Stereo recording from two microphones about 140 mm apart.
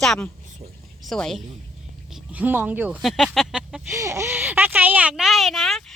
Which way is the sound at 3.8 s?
20° right (ahead or behind).